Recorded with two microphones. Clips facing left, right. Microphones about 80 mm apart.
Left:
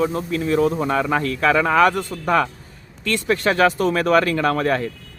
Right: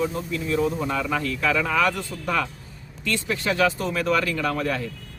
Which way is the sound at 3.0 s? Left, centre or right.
Left.